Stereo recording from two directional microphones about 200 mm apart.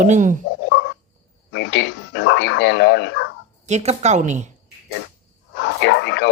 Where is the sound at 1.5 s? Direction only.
65° left (ahead or behind).